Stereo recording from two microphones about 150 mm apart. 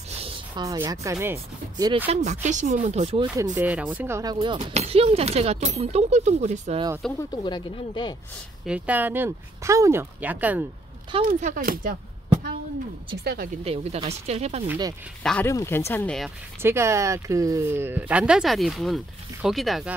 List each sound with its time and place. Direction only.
0.6 s speech: 25° right (ahead or behind)
2.1 s speech: 45° right (ahead or behind)
2.4 s speech: 55° right (ahead or behind)
3.5 s speech: 10° right (ahead or behind)
4.2 s speech: 30° right (ahead or behind); by 6.8 s 45° right (ahead or behind)
7.0 s speech: 5° left (ahead or behind)
7.4 s speech: 30° left (ahead or behind)
8.6 s speech: 10° right (ahead or behind)
11.2 s speech: 65° right (ahead or behind)
13.2 s speech: 90° right
13.7 s speech: 40° right (ahead or behind)
15.4 s speech: 20° left (ahead or behind)
16.6 s speech: 15° right (ahead or behind); by 19.9 s centre (ahead or behind)